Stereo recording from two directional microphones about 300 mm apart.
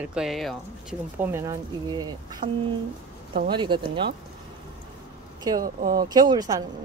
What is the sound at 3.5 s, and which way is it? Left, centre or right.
Speech, centre.